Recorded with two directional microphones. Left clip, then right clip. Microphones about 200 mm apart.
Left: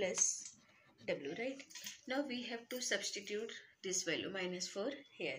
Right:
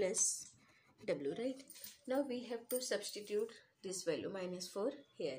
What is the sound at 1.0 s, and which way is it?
Speech, 55° right (ahead or behind).